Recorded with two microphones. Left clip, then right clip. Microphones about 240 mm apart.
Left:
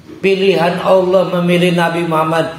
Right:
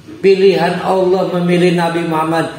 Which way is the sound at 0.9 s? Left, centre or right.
Left.